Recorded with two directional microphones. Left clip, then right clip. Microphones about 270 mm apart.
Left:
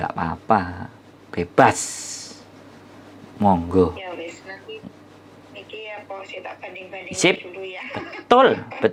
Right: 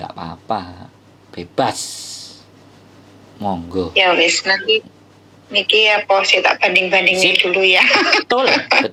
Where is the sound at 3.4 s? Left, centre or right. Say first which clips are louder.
Left 4 dB; centre.